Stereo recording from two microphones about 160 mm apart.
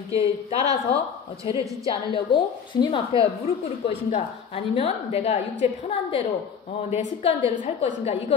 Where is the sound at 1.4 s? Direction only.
35° left (ahead or behind).